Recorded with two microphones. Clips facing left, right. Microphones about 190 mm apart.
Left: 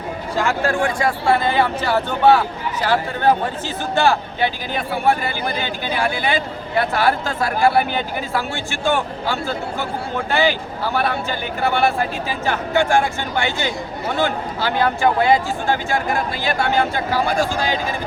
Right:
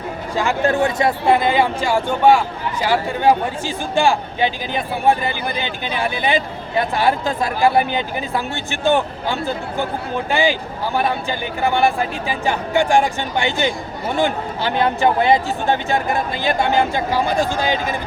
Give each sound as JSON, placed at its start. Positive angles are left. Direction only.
{"t": 0.3, "sound": "a man's voice", "side_deg": -20}